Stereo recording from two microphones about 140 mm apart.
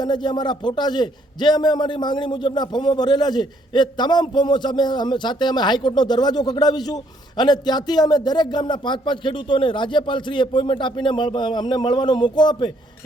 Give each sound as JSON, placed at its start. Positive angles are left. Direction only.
{"t": 0.0, "sound": "a man's voice", "side_deg": 30}